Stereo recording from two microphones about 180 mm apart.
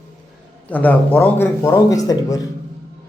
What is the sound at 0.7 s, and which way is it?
A man's voice, 10° left (ahead or behind).